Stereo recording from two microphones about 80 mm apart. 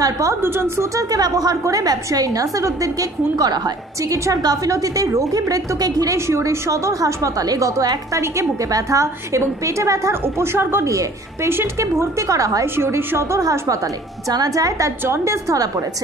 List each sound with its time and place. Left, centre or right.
0.0 s a woman's voice: right
0.4 s speech: right
0.9 s a woman's voice: right
6.1 s a woman's voice: right
10.2 s speech: right
10.9 s a woman's voice: right
12.7 s a woman's voice: right